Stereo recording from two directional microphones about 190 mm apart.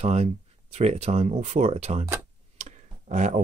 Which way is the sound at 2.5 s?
35° right (ahead or behind).